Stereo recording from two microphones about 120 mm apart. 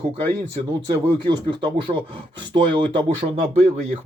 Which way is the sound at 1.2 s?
40° right (ahead or behind).